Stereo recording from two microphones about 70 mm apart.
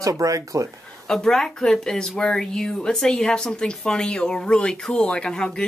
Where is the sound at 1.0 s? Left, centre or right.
Centre.